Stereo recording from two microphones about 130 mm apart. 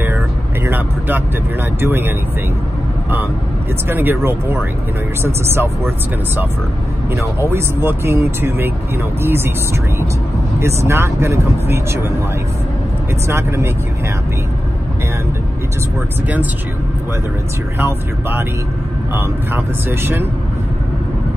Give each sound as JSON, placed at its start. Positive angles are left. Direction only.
{"t": 0.7, "sound": "vehicle", "side_deg": -15}
{"t": 1.8, "sound": "speech", "side_deg": -15}
{"t": 3.9, "sound": "speech", "side_deg": -15}
{"t": 7.1, "sound": "speech", "side_deg": -20}
{"t": 10.6, "sound": "speech", "side_deg": -20}
{"t": 13.3, "sound": "speech", "side_deg": -20}
{"t": 17.7, "sound": "speech", "side_deg": -20}